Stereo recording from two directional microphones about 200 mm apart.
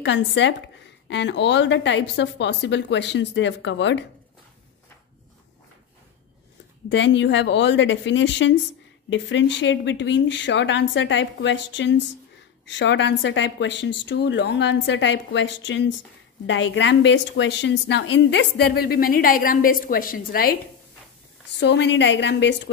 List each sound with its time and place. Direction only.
0.0 s a woman's voice: 65° left (ahead or behind)
6.9 s a woman's voice: 65° left (ahead or behind); by 20.5 s 45° left (ahead or behind)
21.5 s a woman's voice: 60° left (ahead or behind)